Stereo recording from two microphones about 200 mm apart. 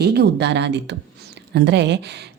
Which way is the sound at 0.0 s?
55° right (ahead or behind).